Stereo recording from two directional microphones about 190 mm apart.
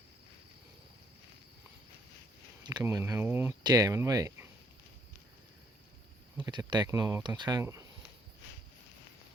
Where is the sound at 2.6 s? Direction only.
20° right (ahead or behind).